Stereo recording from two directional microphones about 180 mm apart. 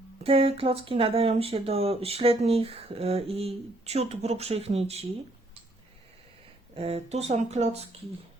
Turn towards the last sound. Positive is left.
turn(degrees=-35)  # may be behind; listen again after turning